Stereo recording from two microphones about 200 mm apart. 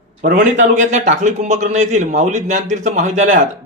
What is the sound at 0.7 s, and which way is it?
A man's voice, 40° right (ahead or behind).